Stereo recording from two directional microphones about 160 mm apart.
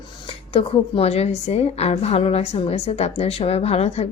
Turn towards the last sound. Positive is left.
turn(degrees=40)  # may be behind; listen again after turning